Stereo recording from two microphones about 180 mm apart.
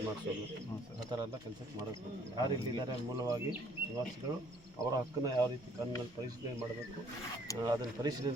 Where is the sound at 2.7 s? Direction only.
20° right (ahead or behind).